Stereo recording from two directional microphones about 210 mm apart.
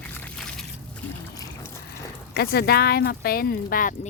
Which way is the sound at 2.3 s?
50° left (ahead or behind).